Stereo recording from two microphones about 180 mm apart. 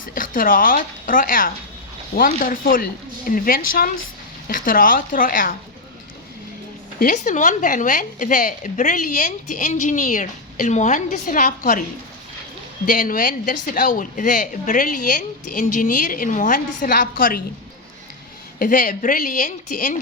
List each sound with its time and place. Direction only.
0.0 s speech: 50° left (ahead or behind)
7.0 s speech: 45° left (ahead or behind)
12.8 s speech: 50° left (ahead or behind)
18.6 s speech: 50° left (ahead or behind)